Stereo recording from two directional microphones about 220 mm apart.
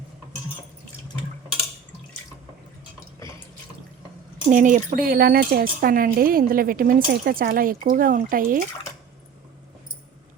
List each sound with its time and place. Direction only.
4.4 s speech: 35° right (ahead or behind)